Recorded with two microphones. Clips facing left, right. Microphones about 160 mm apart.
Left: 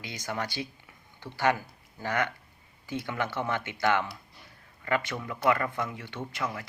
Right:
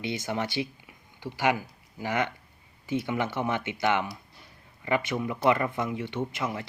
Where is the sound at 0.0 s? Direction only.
25° right (ahead or behind).